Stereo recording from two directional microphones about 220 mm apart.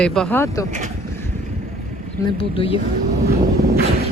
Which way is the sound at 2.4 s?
25° left (ahead or behind).